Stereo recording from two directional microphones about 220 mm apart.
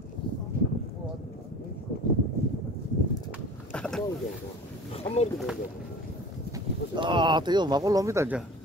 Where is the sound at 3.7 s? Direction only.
5° left (ahead or behind).